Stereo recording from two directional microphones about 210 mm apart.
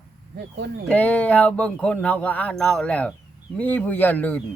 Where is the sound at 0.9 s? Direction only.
5° left (ahead or behind).